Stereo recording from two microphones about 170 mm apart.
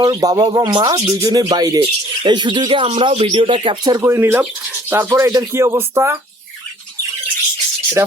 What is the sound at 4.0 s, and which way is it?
Speech, 15° right (ahead or behind).